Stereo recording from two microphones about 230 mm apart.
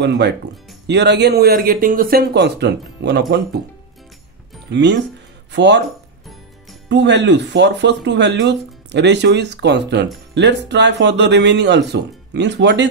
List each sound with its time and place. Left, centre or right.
0.0 s speech: right
4.6 s speech: right
6.9 s speech: right